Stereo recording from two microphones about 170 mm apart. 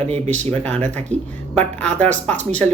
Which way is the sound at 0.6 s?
10° left (ahead or behind).